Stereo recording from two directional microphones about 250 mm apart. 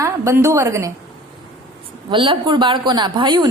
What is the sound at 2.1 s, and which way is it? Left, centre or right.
A woman's voice, centre.